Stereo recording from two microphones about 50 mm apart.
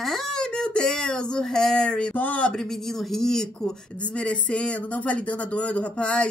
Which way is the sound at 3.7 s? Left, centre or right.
Left.